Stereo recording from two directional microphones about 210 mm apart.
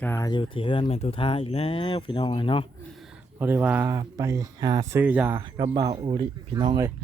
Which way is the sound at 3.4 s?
10° right (ahead or behind).